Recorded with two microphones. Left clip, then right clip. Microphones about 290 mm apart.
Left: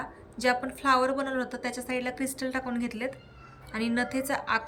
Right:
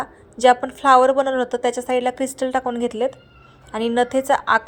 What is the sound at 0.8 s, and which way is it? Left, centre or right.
Speech, right.